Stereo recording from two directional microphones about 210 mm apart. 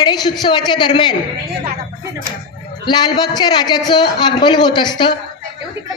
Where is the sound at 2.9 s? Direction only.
20° left (ahead or behind).